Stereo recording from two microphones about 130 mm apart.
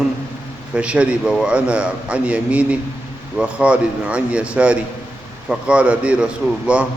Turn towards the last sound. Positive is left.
turn(degrees=-10)  # may be behind; listen again after turning